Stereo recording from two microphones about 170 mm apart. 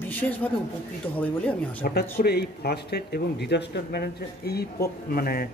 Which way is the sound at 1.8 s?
65° left (ahead or behind).